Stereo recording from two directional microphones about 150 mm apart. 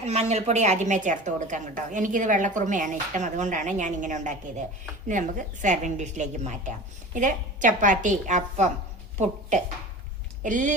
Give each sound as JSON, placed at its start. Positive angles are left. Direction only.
{"t": 0.0, "sound": "a woman's voice", "side_deg": -45}